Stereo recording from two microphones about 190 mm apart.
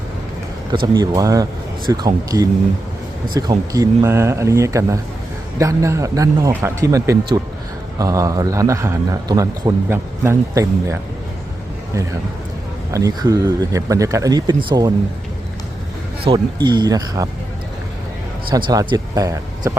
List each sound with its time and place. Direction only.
0.9 s a man's voice: 20° right (ahead or behind)
12.9 s speech: 20° right (ahead or behind)
16.3 s speech: 25° right (ahead or behind)
18.5 s speech: 20° right (ahead or behind)